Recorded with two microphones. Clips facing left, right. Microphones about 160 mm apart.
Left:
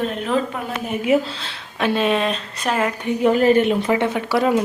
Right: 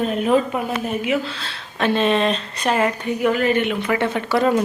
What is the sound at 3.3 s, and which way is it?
Speech, 35° left (ahead or behind).